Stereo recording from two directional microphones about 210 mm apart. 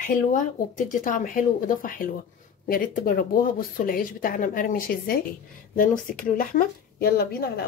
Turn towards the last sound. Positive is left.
turn(degrees=50)  # may be behind; listen again after turning